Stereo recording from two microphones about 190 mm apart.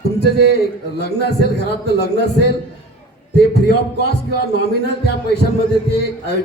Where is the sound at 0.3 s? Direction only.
60° left (ahead or behind).